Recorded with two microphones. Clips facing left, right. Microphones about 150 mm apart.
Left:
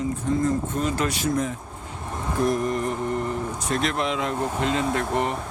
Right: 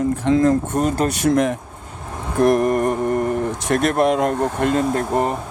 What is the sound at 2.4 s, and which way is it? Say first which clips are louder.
Speech: right 8 dB; 65° right (ahead or behind).